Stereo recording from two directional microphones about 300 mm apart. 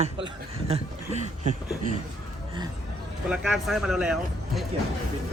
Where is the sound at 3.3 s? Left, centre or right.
Centre.